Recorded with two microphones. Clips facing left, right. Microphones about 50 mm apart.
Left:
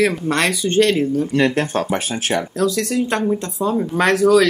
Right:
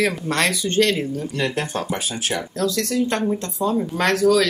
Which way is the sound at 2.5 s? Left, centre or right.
Centre.